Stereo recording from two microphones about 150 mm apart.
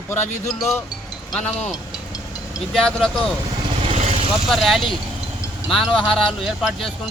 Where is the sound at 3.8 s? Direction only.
45° right (ahead or behind).